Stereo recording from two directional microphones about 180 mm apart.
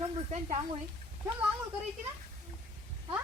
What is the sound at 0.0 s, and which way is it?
Speech, 35° right (ahead or behind).